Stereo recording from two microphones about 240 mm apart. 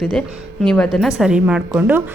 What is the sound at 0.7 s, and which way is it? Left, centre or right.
A woman's voice, centre.